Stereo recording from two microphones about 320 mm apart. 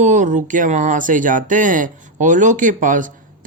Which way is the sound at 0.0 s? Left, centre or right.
Right.